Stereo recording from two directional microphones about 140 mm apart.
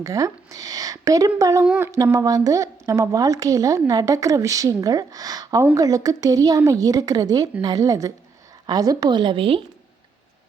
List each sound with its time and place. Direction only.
0.0 s a woman's voice: 25° right (ahead or behind)
1.6 s a sound: 5° right (ahead or behind)
2.1 s a woman's voice: 25° right (ahead or behind)